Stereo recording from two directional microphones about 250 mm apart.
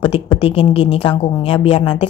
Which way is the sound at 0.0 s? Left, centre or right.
Left.